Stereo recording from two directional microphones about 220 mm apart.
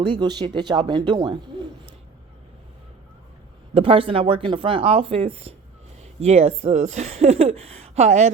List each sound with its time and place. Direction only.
0.0 s speech: 20° right (ahead or behind)
3.8 s speech: 25° right (ahead or behind)